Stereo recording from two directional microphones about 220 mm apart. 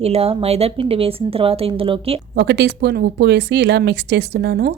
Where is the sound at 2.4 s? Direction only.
50° right (ahead or behind).